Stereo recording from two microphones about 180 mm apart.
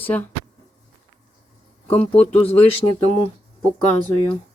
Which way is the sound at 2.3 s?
35° left (ahead or behind).